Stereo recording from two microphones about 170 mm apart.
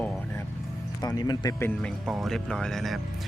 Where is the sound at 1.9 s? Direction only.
Centre (ahead or behind).